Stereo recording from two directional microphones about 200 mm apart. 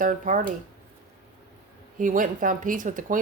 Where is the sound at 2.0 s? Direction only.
40° right (ahead or behind).